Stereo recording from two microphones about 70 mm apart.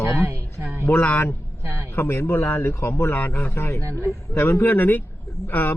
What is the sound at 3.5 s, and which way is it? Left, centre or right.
A man's voice, left.